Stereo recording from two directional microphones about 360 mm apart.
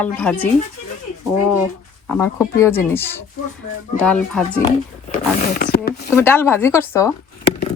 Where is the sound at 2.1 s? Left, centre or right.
Centre.